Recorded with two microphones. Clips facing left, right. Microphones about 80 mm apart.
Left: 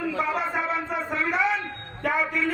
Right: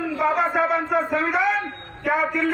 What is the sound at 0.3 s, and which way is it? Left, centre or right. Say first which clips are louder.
A man's voice: right 6 dB; right.